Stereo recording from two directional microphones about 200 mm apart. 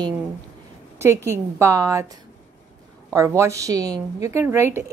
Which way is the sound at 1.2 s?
15° right (ahead or behind).